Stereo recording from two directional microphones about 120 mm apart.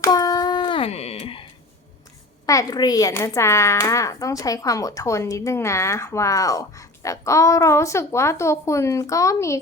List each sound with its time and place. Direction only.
0.0 s a sound: 30° left (ahead or behind)
0.8 s wail: 60° left (ahead or behind)
2.5 s a child's voice: 30° left (ahead or behind)